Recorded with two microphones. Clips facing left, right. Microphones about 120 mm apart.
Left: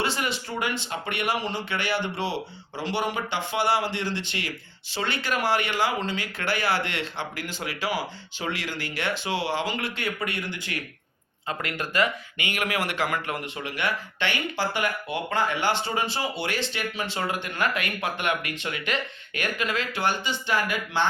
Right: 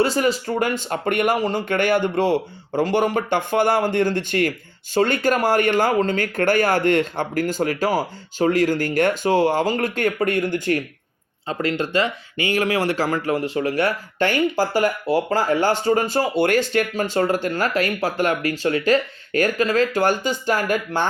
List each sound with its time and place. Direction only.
0.0 s speech: 40° right (ahead or behind)
11.4 s speech: 30° right (ahead or behind); by 21.1 s 45° right (ahead or behind)